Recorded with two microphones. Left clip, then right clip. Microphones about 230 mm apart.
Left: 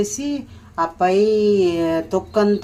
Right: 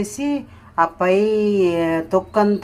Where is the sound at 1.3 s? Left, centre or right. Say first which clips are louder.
Left 2 dB; right.